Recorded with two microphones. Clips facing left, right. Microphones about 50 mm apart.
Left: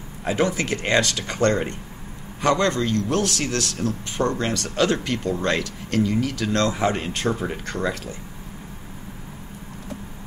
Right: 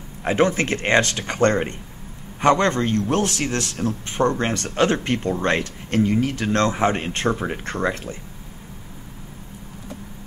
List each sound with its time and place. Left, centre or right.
0.2 s a man's voice: right